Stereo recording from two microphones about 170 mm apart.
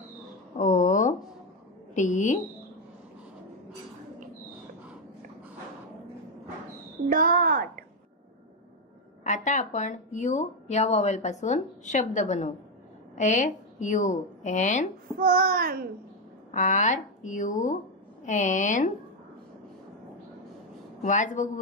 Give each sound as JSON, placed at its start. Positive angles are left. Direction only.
{"t": 0.6, "sound": "a sound", "side_deg": 45}
{"t": 2.0, "sound": "speech", "side_deg": 45}
{"t": 7.1, "sound": "child singing", "side_deg": -55}
{"t": 9.2, "sound": "speech", "side_deg": 45}
{"t": 15.1, "sound": "child singing", "side_deg": -60}
{"t": 16.5, "sound": "speech", "side_deg": 45}
{"t": 21.0, "sound": "speech", "side_deg": 50}